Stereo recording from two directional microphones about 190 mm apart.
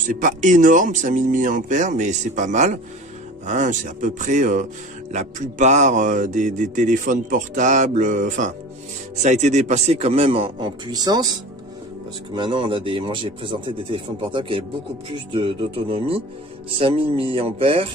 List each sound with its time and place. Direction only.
0.0 s speech: 45° right (ahead or behind); by 11.3 s 20° right (ahead or behind)
12.4 s speech: 25° right (ahead or behind)